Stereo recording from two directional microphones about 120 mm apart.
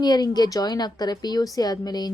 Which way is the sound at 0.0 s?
35° left (ahead or behind).